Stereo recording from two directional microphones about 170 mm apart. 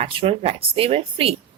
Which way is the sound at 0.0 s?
35° right (ahead or behind).